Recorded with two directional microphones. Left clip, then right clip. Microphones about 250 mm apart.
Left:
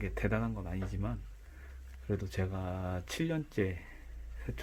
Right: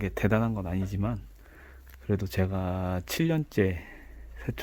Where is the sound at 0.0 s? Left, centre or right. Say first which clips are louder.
Right 8 dB; right.